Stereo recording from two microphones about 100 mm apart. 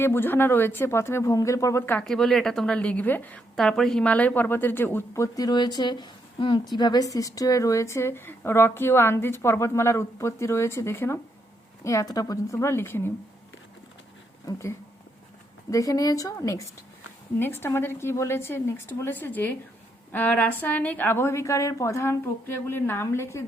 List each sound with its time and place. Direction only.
0.0 s a woman's voice: 20° left (ahead or behind)
2.0 s a woman's voice: 5° left (ahead or behind)
3.5 s a woman's voice: 5° left (ahead or behind); by 13.0 s 25° left (ahead or behind)
14.4 s a woman's voice: 30° left (ahead or behind)
17.4 s a woman's voice: 20° left (ahead or behind)